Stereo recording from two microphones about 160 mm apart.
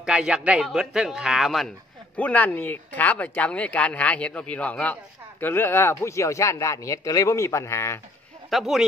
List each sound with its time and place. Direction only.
0.0 s a man's voice: 5° right (ahead or behind)
2.1 s speech: 10° left (ahead or behind)
8.5 s a man's voice: centre (ahead or behind)